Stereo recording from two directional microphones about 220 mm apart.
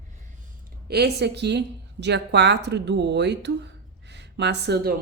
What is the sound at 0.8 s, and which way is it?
A woman's voice, 45° right (ahead or behind).